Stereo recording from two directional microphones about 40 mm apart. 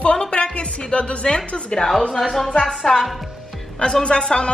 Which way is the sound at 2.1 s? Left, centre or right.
Centre.